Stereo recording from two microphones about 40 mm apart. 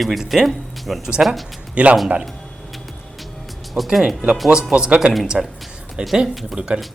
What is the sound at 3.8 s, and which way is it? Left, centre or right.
Speech, centre.